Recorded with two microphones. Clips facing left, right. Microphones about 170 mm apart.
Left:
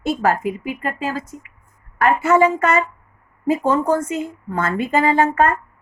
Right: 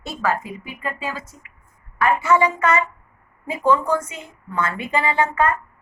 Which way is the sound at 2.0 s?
45° left (ahead or behind).